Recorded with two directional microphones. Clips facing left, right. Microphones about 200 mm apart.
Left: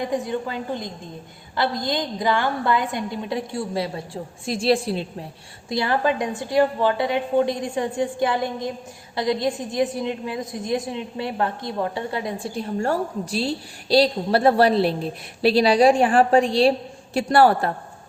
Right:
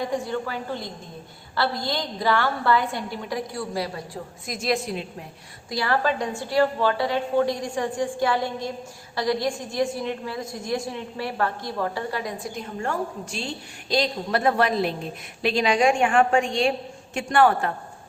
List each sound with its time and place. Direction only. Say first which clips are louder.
0.0 s a woman's voice: left 2 dB; 20° left (ahead or behind); by 17.7 s 35° left (ahead or behind)